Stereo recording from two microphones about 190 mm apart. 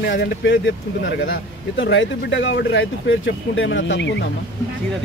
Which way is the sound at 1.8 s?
75° left (ahead or behind).